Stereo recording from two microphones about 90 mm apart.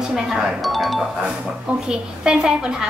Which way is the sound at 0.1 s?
5° right (ahead or behind).